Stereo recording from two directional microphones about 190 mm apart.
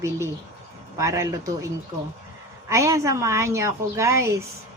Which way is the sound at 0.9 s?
15° right (ahead or behind).